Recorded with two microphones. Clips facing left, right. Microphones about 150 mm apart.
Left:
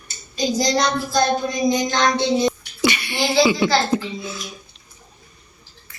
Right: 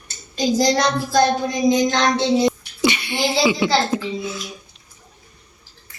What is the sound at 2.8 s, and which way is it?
Speech, 20° right (ahead or behind).